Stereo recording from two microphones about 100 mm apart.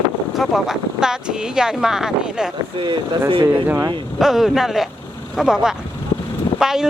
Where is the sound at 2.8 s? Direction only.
50° right (ahead or behind).